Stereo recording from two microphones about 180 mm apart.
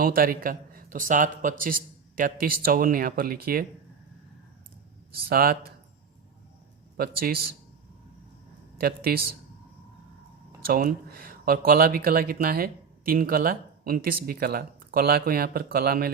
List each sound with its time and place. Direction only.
0.0 s a man's voice: 55° right (ahead or behind)
5.3 s speech: 55° right (ahead or behind)
6.9 s speech: 55° right (ahead or behind)
8.8 s speech: 60° right (ahead or behind)
10.7 s speech: 55° right (ahead or behind)